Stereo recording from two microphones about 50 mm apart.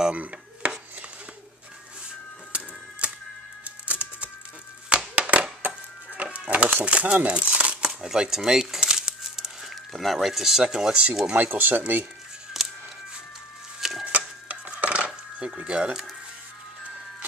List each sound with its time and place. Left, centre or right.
0.1 s dishes: right
3.6 s typewriter: right
4.8 s a sound: right
6.8 s speech: right
7.2 s crumpling: right
8.0 s crumpling: centre
11.3 s speech: right
12.6 s music: centre
13.7 s a sound: centre
14.0 s cutlery: right
15.3 s speech: right